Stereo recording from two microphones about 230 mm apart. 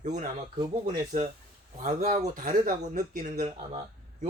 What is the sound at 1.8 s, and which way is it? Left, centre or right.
Speech, right.